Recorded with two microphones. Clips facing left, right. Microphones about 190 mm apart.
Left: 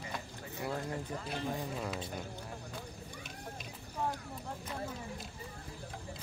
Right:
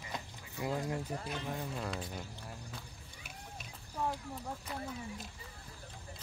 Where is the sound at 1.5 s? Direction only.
5° left (ahead or behind).